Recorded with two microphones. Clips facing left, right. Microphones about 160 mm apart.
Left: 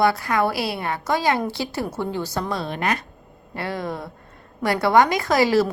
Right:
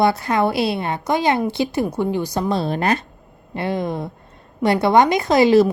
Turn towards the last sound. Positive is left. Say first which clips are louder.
# right 5 dB
turn(degrees=-20)  # may be behind; listen again after turning